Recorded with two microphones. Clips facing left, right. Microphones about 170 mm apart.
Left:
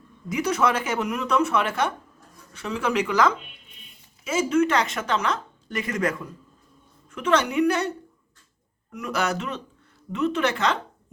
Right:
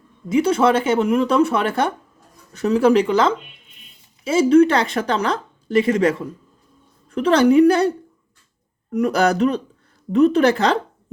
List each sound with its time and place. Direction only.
0.3 s speech: 30° right (ahead or behind)